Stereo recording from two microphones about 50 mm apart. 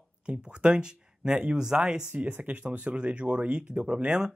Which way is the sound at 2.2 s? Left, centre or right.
Right.